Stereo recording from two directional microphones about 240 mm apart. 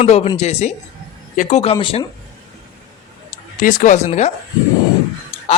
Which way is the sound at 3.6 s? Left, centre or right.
Left.